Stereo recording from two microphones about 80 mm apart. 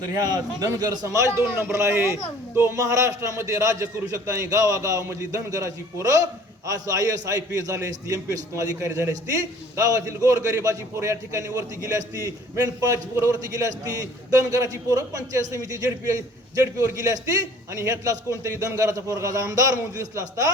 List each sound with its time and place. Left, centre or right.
0.0 s a man's voice: right
1.0 s a man's voice: right